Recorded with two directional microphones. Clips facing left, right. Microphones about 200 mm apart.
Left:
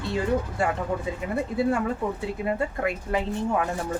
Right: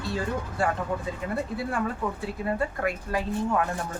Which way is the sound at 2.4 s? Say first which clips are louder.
Even; 20° left (ahead or behind).